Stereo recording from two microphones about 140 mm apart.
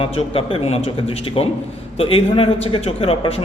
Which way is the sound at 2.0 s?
40° left (ahead or behind).